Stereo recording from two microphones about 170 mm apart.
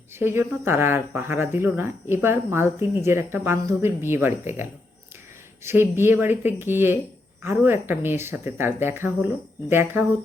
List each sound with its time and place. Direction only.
0.1 s speech: 15° right (ahead or behind)